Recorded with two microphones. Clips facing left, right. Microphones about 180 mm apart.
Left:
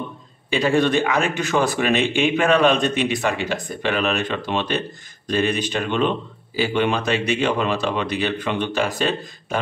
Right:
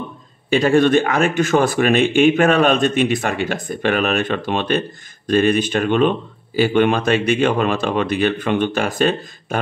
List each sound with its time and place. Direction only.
0.5 s speech: 50° right (ahead or behind)